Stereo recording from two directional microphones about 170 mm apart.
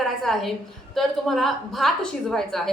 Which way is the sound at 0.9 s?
Centre (ahead or behind).